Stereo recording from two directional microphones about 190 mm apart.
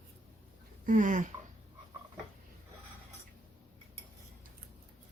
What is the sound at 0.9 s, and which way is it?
Speech, 40° right (ahead or behind).